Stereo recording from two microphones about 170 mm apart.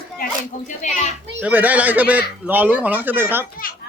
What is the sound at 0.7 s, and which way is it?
Speech, 45° left (ahead or behind).